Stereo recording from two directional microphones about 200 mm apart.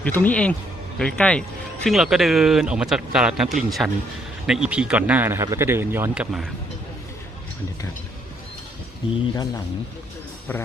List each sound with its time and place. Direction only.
0.0 s speech: 10° left (ahead or behind)
9.3 s a man's voice: 20° left (ahead or behind)